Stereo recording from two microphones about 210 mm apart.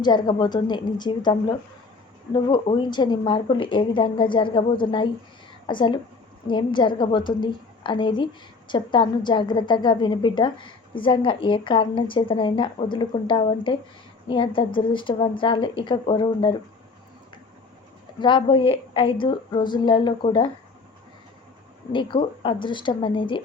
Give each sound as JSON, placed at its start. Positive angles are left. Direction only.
{"t": 0.0, "sound": "a woman's voice", "side_deg": 20}
{"t": 18.2, "sound": "a woman's voice", "side_deg": 20}
{"t": 21.9, "sound": "a woman's voice", "side_deg": 25}